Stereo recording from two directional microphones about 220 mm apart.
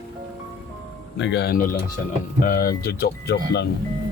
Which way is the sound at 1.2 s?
50° left (ahead or behind).